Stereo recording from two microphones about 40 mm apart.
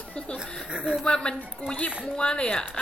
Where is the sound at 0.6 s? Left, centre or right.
Centre.